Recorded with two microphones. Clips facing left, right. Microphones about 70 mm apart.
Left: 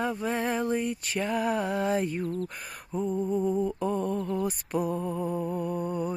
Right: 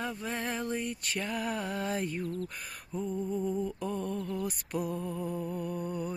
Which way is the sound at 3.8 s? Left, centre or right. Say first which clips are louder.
Left 6 dB; left.